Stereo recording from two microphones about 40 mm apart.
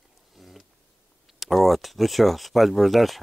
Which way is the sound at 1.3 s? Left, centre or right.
Centre.